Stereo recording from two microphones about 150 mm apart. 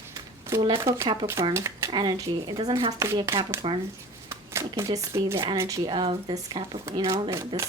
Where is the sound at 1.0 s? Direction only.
30° right (ahead or behind).